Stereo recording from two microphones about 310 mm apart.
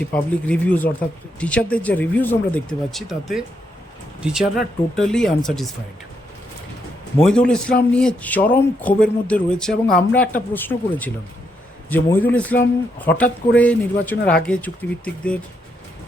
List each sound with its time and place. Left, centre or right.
0.0 s a man's voice: centre
7.2 s a man's voice: centre